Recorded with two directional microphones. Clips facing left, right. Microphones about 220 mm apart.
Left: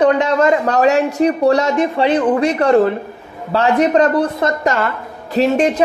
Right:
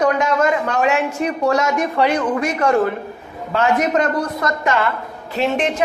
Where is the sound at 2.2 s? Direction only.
35° left (ahead or behind).